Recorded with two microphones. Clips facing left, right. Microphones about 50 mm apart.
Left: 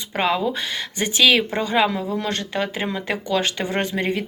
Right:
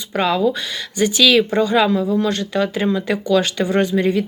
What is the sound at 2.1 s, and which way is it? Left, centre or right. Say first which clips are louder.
Speech: right 6 dB; left.